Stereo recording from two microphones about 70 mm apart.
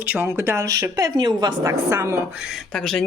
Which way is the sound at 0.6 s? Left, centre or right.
Right.